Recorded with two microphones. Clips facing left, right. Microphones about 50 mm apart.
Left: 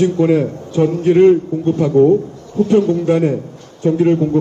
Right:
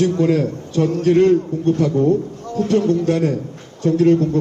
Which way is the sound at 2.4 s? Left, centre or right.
Right.